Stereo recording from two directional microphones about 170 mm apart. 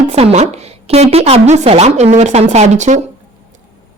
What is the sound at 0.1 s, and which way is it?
Speech, 35° right (ahead or behind).